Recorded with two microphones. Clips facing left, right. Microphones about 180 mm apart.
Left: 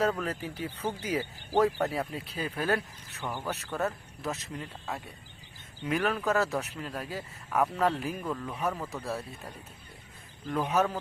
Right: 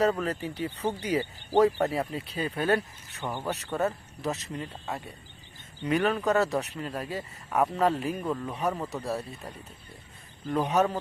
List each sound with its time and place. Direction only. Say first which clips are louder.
0.0 s speech: right 3 dB; centre (ahead or behind)
3.2 s speech: right 3 dB; 20° right (ahead or behind)
3.5 s speech: right 4 dB; centre (ahead or behind)
5.8 s speech: right 3 dB; centre (ahead or behind)
8.3 s speech: right 3 dB; 15° right (ahead or behind)
8.5 s speech: right 3 dB; centre (ahead or behind)
10.5 s speech: right 3 dB; centre (ahead or behind)